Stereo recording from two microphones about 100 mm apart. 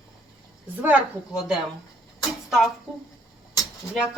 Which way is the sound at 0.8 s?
15° right (ahead or behind).